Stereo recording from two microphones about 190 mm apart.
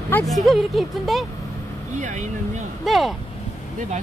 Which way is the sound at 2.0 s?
40° right (ahead or behind).